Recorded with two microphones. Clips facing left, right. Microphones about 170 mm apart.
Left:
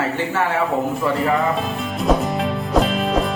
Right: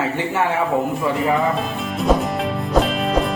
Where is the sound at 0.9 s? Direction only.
Centre (ahead or behind).